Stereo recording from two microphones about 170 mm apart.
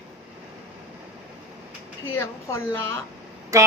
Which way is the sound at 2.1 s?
15° left (ahead or behind).